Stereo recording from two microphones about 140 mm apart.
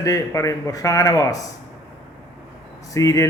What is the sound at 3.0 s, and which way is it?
Speech, 25° left (ahead or behind).